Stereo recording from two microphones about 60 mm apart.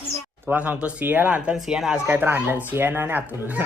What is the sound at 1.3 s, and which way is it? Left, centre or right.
Speech, centre.